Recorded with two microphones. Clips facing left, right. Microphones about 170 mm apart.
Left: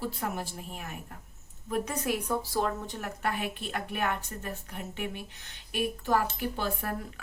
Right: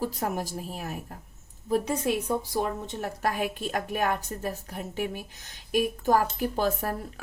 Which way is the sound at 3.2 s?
40° right (ahead or behind).